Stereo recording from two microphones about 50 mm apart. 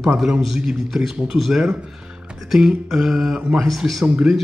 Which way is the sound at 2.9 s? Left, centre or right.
Centre.